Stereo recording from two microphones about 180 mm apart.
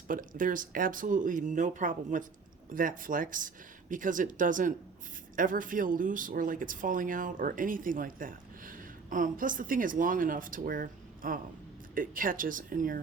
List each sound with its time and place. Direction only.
0.1 s speech: 50° right (ahead or behind)